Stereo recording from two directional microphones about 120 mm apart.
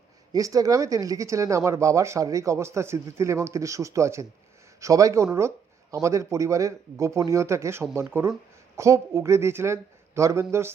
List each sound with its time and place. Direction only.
0.3 s speech: 30° right (ahead or behind)